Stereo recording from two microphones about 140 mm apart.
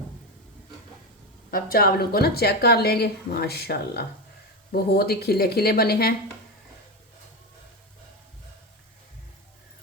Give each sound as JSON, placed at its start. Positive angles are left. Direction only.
{"t": 1.5, "sound": "a woman's voice", "side_deg": 90}